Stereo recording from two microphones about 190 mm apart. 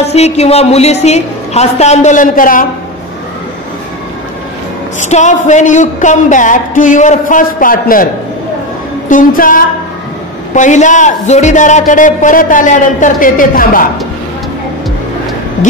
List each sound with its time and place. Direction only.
0.0 s a man's voice: 35° left (ahead or behind)
5.0 s a man's voice: 40° left (ahead or behind)
9.1 s music: 45° left (ahead or behind)
10.5 s a man's voice: 40° left (ahead or behind)